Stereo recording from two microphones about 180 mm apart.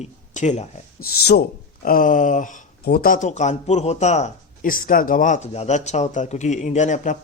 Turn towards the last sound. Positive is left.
turn(degrees=40)  # may be behind; listen again after turning